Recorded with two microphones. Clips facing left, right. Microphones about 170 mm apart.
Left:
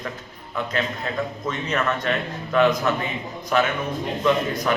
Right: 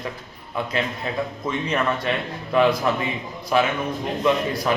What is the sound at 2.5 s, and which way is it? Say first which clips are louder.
Speech: even; 10° right (ahead or behind).